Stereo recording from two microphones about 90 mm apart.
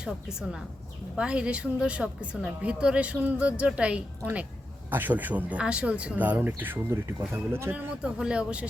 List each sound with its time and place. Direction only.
1.1 s speech: 10° right (ahead or behind)